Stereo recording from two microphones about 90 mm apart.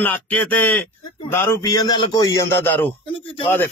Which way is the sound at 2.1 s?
35° left (ahead or behind).